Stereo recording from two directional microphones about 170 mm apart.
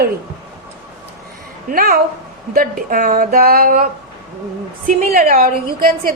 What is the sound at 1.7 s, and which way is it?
A woman's voice, 60° right (ahead or behind).